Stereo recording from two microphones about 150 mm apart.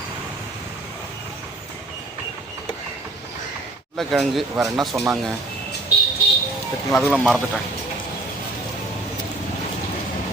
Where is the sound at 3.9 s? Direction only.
Centre (ahead or behind).